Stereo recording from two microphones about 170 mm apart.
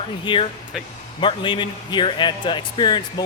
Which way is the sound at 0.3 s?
30° left (ahead or behind).